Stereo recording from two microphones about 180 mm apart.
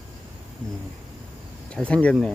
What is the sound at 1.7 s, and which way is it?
Speech, 5° left (ahead or behind).